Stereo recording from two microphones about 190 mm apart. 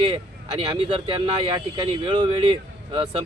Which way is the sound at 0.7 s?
25° right (ahead or behind).